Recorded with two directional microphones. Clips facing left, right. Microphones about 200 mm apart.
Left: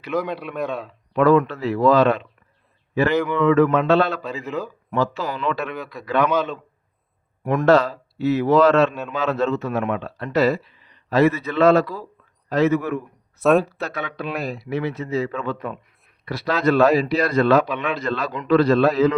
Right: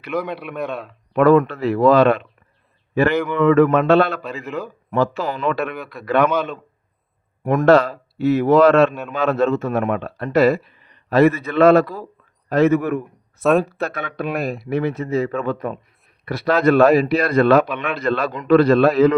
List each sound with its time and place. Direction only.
0.3 s a man's voice: centre (ahead or behind)
1.1 s a man's voice: 55° right (ahead or behind)
13.4 s a man's voice: centre (ahead or behind)
13.7 s a man's voice: 55° right (ahead or behind)